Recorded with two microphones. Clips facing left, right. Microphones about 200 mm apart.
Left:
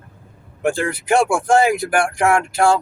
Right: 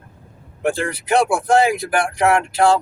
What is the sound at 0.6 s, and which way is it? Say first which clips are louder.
Speech: left 1 dB; 50° left (ahead or behind).